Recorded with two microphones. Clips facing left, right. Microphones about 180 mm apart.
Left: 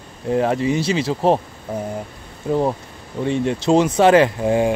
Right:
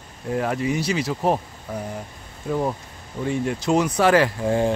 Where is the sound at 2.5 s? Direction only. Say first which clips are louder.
Left 5 dB; 30° left (ahead or behind).